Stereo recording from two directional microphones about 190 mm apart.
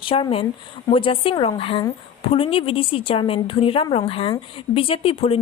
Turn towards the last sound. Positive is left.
turn(degrees=30)  # may be behind; listen again after turning